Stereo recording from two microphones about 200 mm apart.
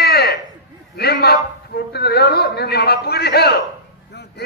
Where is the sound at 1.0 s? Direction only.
55° left (ahead or behind).